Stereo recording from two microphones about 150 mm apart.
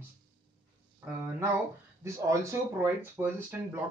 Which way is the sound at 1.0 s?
10° right (ahead or behind).